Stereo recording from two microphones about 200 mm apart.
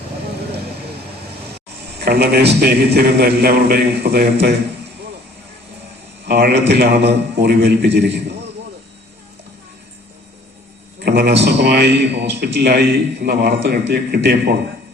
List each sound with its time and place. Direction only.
1.5 s a man's voice: 55° right (ahead or behind)
6.2 s a man's voice: 55° right (ahead or behind)
11.0 s a sound: 55° right (ahead or behind)
11.6 s a man's voice: 55° right (ahead or behind)